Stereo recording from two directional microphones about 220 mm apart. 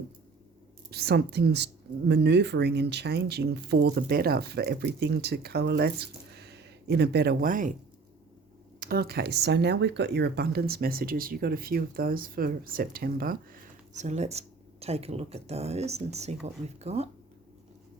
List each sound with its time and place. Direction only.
0.9 s speech: 45° right (ahead or behind)
8.8 s speech: 45° right (ahead or behind)